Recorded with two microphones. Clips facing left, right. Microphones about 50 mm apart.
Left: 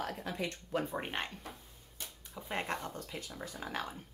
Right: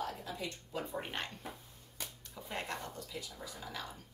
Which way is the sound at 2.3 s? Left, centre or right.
Left.